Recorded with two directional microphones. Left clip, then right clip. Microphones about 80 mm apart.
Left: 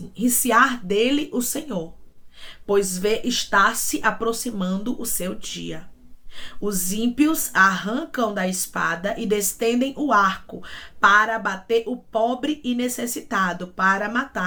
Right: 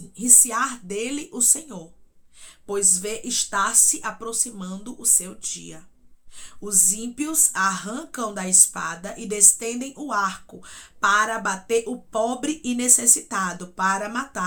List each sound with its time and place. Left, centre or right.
0.2 s speech: right